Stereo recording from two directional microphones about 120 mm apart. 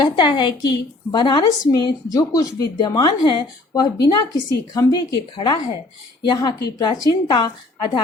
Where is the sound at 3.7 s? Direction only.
35° left (ahead or behind).